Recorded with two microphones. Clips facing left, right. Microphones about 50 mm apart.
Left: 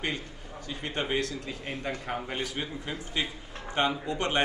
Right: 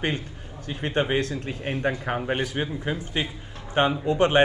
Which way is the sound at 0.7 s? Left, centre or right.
Right.